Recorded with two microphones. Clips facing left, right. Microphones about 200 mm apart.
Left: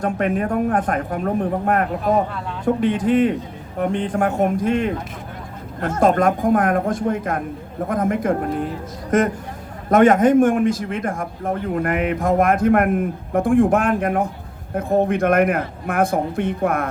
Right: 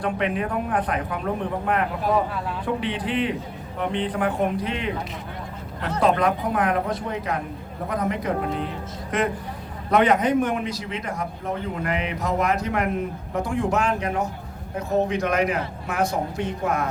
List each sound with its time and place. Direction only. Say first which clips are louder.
0.0 s a man's voice: left 4 dB; 45° left (ahead or behind)